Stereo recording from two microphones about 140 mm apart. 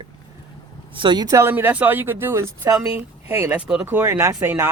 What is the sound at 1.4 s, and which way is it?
Speech, 15° right (ahead or behind).